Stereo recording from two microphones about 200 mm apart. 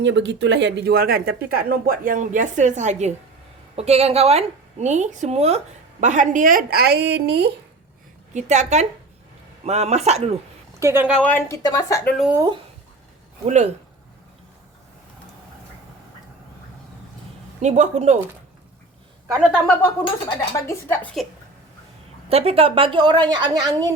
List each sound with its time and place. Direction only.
0.0 s a woman's voice: 65° right (ahead or behind)
8.3 s a woman's voice: 35° right (ahead or behind)
10.8 s speech: 10° right (ahead or behind)
11.2 s speech: 10° left (ahead or behind)
12.3 s speech: 15° right (ahead or behind)
17.6 s a woman's voice: 35° right (ahead or behind)
19.3 s speech: 5° right (ahead or behind)
20.1 s speech: 20° left (ahead or behind)
20.8 s speech: 10° left (ahead or behind)
22.3 s a woman's voice: 30° right (ahead or behind)